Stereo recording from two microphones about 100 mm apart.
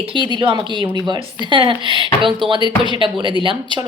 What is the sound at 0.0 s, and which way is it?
Speech, 55° right (ahead or behind).